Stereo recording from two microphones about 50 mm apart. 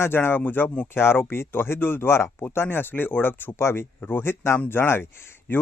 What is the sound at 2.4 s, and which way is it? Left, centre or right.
Speech, left.